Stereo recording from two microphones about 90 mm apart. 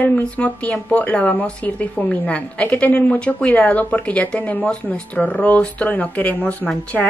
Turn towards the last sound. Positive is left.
turn(degrees=15)  # may be behind; listen again after turning